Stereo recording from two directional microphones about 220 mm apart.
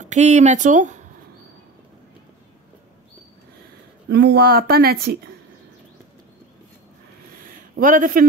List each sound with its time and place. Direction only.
0.0 s speech: 30° right (ahead or behind)
4.1 s speech: 50° right (ahead or behind)
7.7 s speech: 40° right (ahead or behind)